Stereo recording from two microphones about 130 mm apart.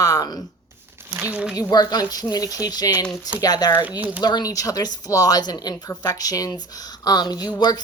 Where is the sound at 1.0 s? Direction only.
15° right (ahead or behind).